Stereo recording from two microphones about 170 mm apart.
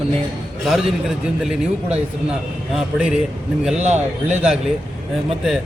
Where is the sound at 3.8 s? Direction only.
45° right (ahead or behind).